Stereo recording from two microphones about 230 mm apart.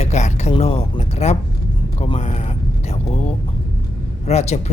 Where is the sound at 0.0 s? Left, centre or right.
Left.